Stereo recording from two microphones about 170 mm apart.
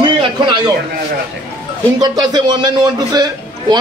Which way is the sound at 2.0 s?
25° right (ahead or behind).